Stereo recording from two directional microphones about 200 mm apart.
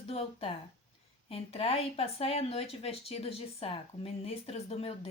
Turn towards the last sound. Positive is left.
turn(degrees=30)  # may be behind; listen again after turning